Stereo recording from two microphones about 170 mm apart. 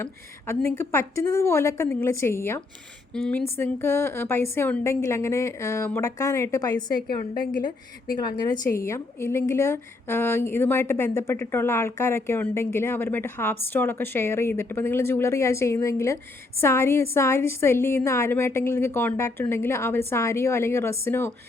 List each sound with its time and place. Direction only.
0.0 s a woman's voice: 15° left (ahead or behind)
8.0 s a woman's voice: 60° left (ahead or behind)
8.7 s a woman's voice: 15° left (ahead or behind)